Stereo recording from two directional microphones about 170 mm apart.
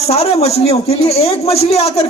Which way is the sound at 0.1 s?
35° left (ahead or behind).